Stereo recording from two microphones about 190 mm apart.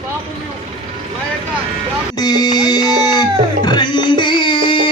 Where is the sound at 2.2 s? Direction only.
20° left (ahead or behind).